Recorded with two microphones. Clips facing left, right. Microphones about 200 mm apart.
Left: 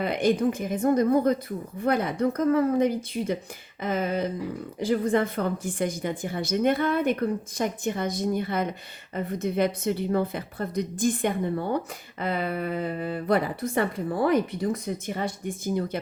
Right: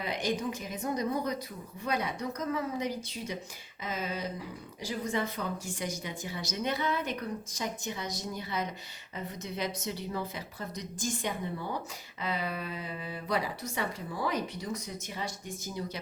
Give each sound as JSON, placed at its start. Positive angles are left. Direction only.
{"t": 0.0, "sound": "a woman's voice", "side_deg": 55}